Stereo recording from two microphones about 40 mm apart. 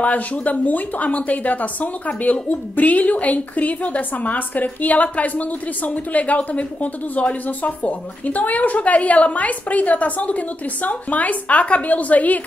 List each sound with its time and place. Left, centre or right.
0.0 s a woman's voice: left